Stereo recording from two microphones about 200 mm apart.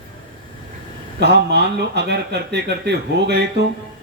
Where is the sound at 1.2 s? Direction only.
55° right (ahead or behind).